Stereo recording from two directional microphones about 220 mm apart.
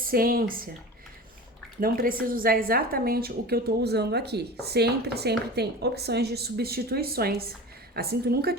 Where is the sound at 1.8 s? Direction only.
40° right (ahead or behind).